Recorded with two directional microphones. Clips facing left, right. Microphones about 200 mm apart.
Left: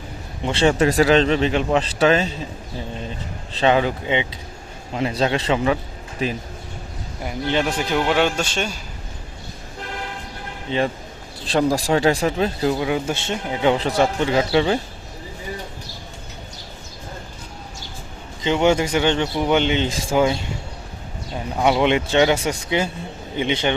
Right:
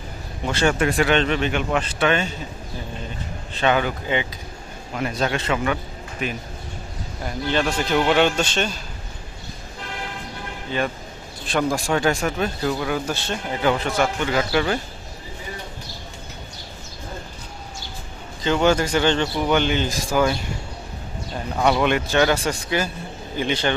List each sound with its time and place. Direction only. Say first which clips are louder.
0.4 s speech: left 3 dB; 30° left (ahead or behind)
3.6 s a man's voice: left 3 dB; 30° left (ahead or behind)
7.3 s speech: left 1 dB; 15° left (ahead or behind)
10.7 s a man's voice: left 3 dB; 25° left (ahead or behind)
18.4 s a man's voice: left 1 dB; 20° left (ahead or behind)
21.5 s a man's voice: left 2 dB; 15° left (ahead or behind)